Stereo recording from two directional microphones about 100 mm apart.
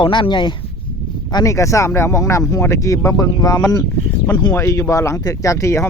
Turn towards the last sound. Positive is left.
turn(degrees=30)  # may be behind; listen again after turning